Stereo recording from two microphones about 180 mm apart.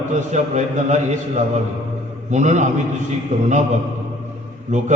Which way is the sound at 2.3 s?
40° right (ahead or behind).